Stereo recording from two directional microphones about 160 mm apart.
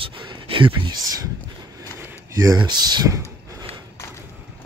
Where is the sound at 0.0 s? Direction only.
30° right (ahead or behind).